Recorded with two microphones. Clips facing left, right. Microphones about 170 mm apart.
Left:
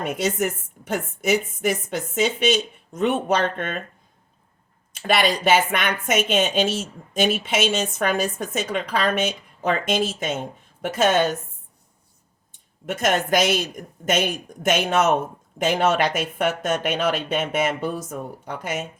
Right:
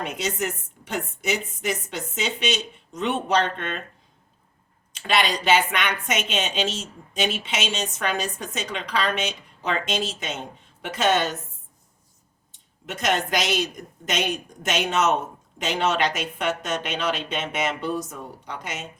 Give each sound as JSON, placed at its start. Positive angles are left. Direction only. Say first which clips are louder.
{"t": 0.2, "sound": "a woman's voice", "louder": "left 4 dB", "side_deg": 50}
{"t": 4.9, "sound": "a woman's voice", "louder": "left 3 dB", "side_deg": 50}
{"t": 12.8, "sound": "a woman's voice", "louder": "left 3 dB", "side_deg": 50}